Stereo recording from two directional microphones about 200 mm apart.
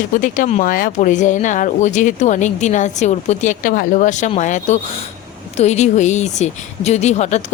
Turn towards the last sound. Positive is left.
turn(degrees=35)  # may be behind; listen again after turning